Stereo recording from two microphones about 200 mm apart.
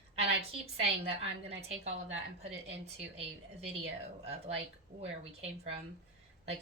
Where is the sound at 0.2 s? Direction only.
30° right (ahead or behind).